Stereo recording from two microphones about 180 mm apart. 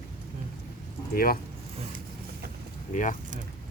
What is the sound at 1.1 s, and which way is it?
Speech, 55° left (ahead or behind).